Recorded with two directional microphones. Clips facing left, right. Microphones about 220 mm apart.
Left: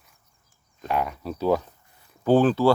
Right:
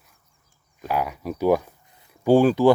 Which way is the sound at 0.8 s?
5° right (ahead or behind).